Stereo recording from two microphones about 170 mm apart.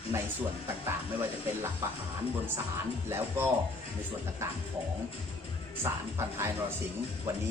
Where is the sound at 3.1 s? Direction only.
15° right (ahead or behind).